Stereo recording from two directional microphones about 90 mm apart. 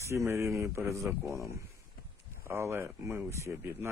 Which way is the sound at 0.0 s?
30° right (ahead or behind).